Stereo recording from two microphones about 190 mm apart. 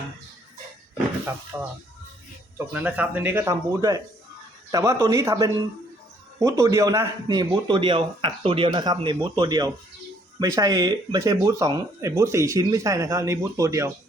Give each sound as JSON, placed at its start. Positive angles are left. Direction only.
{"t": 1.5, "sound": "a man's voice", "side_deg": -15}